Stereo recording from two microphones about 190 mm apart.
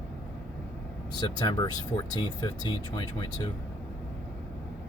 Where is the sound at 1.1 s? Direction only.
20° left (ahead or behind).